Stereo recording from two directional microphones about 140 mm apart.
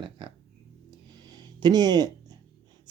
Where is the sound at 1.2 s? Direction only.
30° right (ahead or behind).